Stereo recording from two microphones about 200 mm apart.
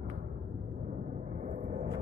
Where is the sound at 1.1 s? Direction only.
40° right (ahead or behind).